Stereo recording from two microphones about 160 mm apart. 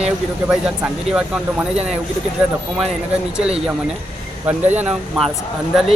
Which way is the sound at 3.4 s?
5° right (ahead or behind).